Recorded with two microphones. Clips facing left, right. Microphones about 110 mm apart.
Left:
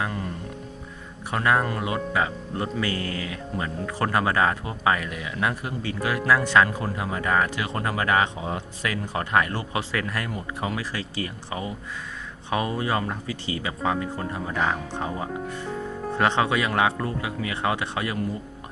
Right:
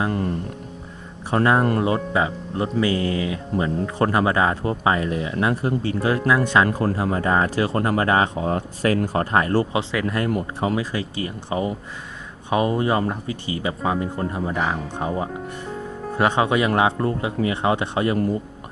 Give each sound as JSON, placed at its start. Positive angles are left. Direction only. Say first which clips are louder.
{"t": 0.1, "sound": "speech", "louder": "right 8 dB", "side_deg": -50}
{"t": 1.3, "sound": "speech", "louder": "right 5 dB", "side_deg": -30}
{"t": 2.8, "sound": "speech", "louder": "right 7 dB", "side_deg": -20}
{"t": 6.3, "sound": "speech", "louder": "left 1 dB", "side_deg": -20}
{"t": 6.7, "sound": "speech", "louder": "right 7 dB", "side_deg": -50}
{"t": 6.9, "sound": "speech", "louder": "right 4 dB", "side_deg": -35}
{"t": 8.4, "sound": "speech", "louder": "right 7 dB", "side_deg": -50}
{"t": 9.7, "sound": "speech", "louder": "right 5 dB", "side_deg": -20}